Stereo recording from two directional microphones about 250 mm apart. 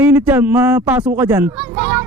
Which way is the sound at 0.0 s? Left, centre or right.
Centre.